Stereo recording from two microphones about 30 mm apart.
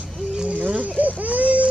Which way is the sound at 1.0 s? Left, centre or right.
Right.